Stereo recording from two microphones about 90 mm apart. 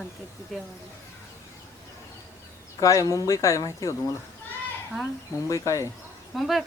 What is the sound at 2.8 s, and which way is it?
Speech, 35° left (ahead or behind).